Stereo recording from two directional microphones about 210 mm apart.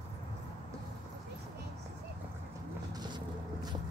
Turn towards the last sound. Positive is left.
turn(degrees=-20)  # may be behind; listen again after turning